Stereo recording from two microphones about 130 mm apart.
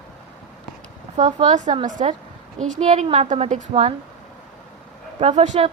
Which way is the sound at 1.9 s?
75° right (ahead or behind).